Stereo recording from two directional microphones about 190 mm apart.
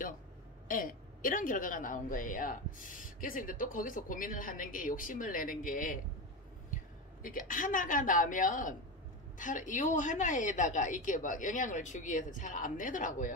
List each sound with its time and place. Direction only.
0.7 s a woman's voice: 45° left (ahead or behind)